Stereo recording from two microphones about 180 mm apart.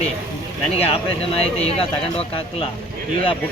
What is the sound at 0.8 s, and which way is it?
Speech, 35° left (ahead or behind).